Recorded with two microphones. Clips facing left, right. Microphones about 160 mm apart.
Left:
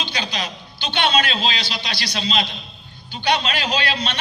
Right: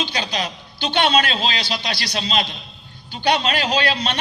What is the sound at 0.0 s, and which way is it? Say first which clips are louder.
A man's voice: right 3 dB; 40° right (ahead or behind).